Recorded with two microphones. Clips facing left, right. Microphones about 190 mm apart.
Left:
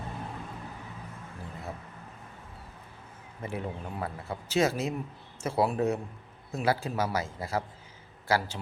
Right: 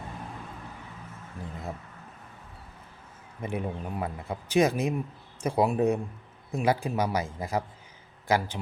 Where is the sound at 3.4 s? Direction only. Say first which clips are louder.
Right 3 dB; 15° right (ahead or behind).